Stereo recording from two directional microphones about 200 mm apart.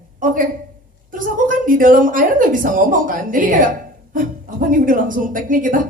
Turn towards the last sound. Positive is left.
turn(degrees=-40)  # may be behind; listen again after turning